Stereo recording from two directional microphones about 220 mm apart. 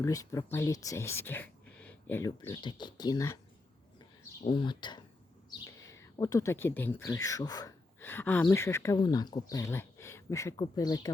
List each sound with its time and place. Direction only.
0.0 s speech: 15° left (ahead or behind)
4.4 s speech: 20° left (ahead or behind)